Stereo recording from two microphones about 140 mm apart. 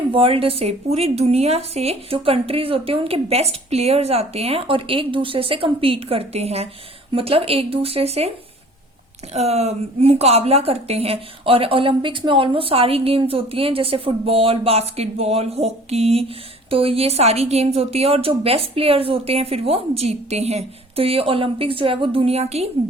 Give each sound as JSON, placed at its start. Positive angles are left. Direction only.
{"t": 0.1, "sound": "a woman's voice", "side_deg": -40}
{"t": 9.3, "sound": "a woman's voice", "side_deg": -50}